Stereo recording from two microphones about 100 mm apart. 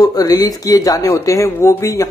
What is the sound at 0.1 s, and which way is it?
Speech, 40° left (ahead or behind).